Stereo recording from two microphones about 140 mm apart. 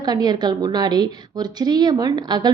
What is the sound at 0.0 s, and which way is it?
A woman's voice, 30° right (ahead or behind).